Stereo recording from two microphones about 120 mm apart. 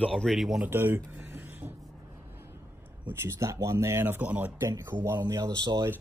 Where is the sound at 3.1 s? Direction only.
25° right (ahead or behind).